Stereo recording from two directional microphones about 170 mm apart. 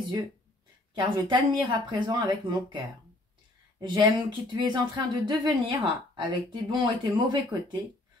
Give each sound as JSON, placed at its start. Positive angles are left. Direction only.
{"t": 0.9, "sound": "speech", "side_deg": -30}
{"t": 3.8, "sound": "speech", "side_deg": -30}